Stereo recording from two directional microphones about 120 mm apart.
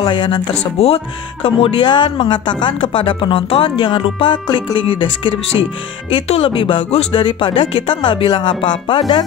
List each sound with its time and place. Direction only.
0.0 s speech: 40° left (ahead or behind)
0.7 s speech: 55° left (ahead or behind)